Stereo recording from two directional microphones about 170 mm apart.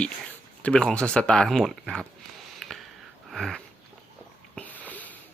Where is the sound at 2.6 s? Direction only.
Centre (ahead or behind).